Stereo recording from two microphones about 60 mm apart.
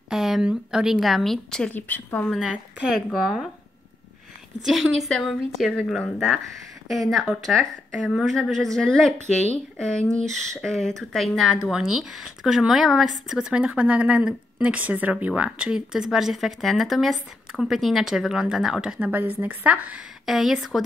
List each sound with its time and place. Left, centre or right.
0.1 s speech: centre
1.7 s speech: left
2.4 s speech: centre
3.1 s speech: centre
4.6 s speech: centre
11.7 s speech: centre
13.5 s speech: centre
19.1 s a woman's voice: right
20.2 s speech: centre